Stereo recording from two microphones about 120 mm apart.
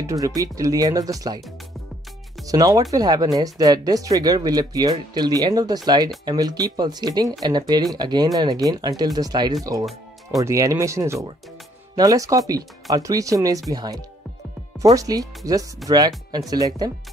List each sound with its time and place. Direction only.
0.0 s speech: 30° right (ahead or behind)
2.4 s speech: 30° right (ahead or behind)
15.8 s speech: centre (ahead or behind)
16.3 s speech: 30° right (ahead or behind)